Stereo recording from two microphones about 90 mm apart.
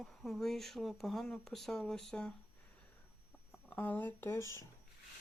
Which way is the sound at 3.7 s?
20° left (ahead or behind).